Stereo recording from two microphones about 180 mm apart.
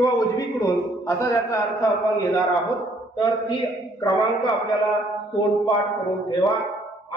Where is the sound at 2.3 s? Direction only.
Centre (ahead or behind).